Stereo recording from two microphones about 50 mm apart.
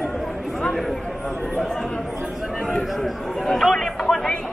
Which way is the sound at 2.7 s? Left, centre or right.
Centre.